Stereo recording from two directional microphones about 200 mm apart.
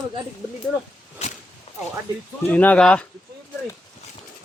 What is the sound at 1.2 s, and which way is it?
Whip, 30° left (ahead or behind).